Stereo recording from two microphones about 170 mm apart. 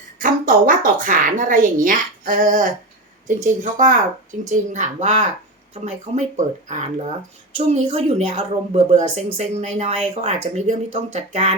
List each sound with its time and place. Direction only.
0.2 s a woman's voice: 50° right (ahead or behind)